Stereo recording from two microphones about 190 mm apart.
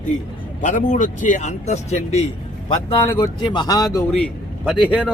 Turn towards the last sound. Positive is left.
turn(degrees=-5)  # may be behind; listen again after turning